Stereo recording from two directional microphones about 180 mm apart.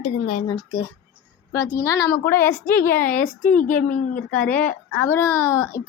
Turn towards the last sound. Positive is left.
turn(degrees=15)  # may be behind; listen again after turning